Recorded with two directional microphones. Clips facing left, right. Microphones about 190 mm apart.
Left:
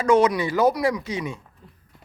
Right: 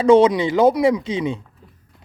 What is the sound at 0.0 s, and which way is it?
Speech, 30° right (ahead or behind).